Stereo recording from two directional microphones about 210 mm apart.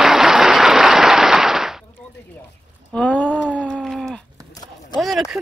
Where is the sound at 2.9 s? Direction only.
5° left (ahead or behind).